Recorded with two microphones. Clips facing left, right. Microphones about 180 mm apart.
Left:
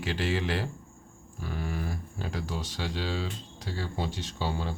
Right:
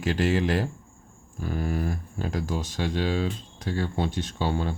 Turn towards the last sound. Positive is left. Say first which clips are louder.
# right 5 dB
turn(degrees=-55)  # may be behind; listen again after turning